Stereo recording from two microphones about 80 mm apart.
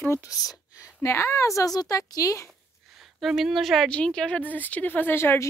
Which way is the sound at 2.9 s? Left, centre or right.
Centre.